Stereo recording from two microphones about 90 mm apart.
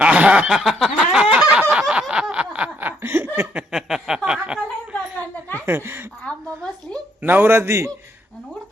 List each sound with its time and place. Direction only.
0.0 s a sound: 15° right (ahead or behind)
1.8 s snicker: 10° right (ahead or behind)
3.0 s laughter: 25° right (ahead or behind)
3.5 s chuckle: 5° right (ahead or behind)
5.6 s speech: 25° right (ahead or behind)
6.2 s a sound: 10° left (ahead or behind)
7.2 s speech: 20° right (ahead or behind)